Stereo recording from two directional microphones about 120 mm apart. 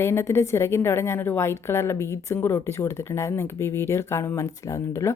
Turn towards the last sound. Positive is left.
turn(degrees=25)  # may be behind; listen again after turning